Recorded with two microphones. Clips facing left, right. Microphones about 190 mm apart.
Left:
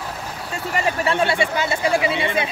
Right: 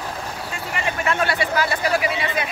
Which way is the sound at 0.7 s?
40° left (ahead or behind).